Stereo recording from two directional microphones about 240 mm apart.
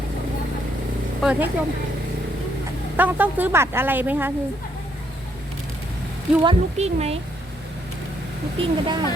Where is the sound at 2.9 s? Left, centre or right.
Centre.